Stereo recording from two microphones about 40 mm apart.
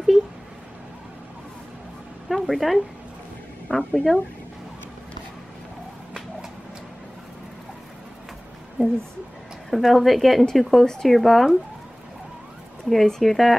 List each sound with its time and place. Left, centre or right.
2.2 s a sound: centre
3.7 s speech: centre
8.8 s a woman's voice: right
9.7 s speech: centre
12.9 s speech: centre